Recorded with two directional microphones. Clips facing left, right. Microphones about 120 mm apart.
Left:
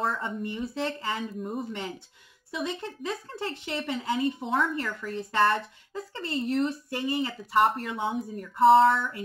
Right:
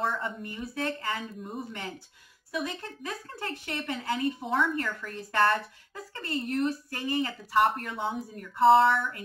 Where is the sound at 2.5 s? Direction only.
20° left (ahead or behind).